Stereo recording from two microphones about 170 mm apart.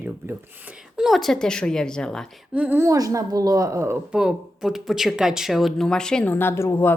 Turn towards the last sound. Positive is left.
turn(degrees=15)  # may be behind; listen again after turning